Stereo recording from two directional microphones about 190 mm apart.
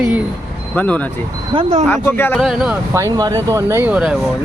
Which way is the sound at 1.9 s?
10° left (ahead or behind).